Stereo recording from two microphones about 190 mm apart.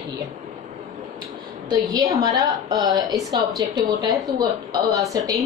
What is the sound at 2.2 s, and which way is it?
A woman's voice, 20° right (ahead or behind).